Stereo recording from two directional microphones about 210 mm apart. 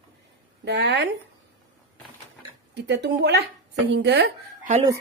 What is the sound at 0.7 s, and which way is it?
Speech, 55° right (ahead or behind).